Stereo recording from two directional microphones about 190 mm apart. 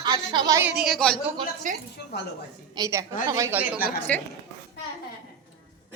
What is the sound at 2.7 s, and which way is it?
Speech, 20° right (ahead or behind).